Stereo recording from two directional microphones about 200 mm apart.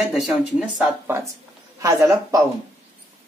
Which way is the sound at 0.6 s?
10° right (ahead or behind).